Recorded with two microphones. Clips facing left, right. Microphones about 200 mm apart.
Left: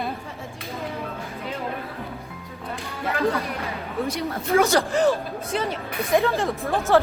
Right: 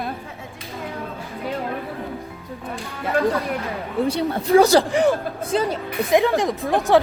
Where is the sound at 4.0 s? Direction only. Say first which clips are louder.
Right 6 dB; 30° right (ahead or behind).